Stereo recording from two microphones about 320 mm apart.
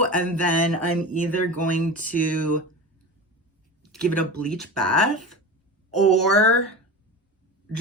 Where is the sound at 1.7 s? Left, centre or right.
Left.